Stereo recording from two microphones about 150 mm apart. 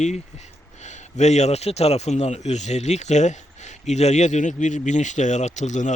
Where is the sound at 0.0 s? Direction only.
50° left (ahead or behind).